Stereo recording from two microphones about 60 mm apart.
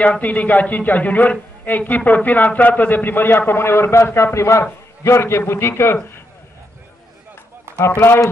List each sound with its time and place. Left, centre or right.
0.0 s a man's voice: left
7.8 s a man's voice: left